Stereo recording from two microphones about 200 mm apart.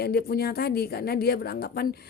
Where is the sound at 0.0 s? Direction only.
50° left (ahead or behind).